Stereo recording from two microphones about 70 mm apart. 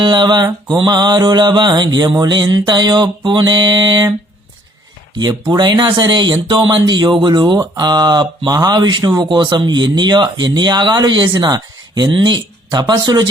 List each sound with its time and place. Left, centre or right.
0.0 s speech: right
5.5 s speech: right
7.6 s speech: right